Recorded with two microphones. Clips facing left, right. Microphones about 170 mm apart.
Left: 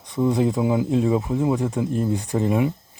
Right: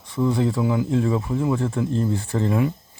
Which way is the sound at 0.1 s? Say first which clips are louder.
Left 1 dB; 20° left (ahead or behind).